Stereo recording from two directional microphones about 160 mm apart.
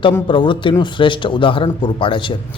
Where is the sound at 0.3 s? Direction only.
30° left (ahead or behind).